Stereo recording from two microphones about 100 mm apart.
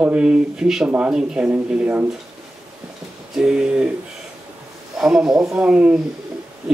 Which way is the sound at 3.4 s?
5° right (ahead or behind).